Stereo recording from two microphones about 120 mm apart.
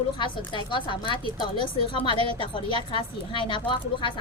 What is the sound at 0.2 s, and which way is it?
Speech, 45° left (ahead or behind).